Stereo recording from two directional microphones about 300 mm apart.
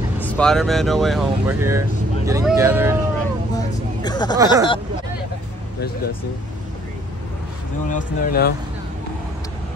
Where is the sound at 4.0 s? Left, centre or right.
Centre.